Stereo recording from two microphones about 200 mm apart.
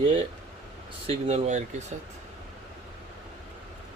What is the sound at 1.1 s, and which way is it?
Speech, 35° right (ahead or behind).